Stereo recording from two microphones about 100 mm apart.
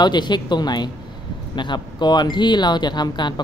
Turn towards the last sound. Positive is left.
turn(degrees=45)  # may be behind; listen again after turning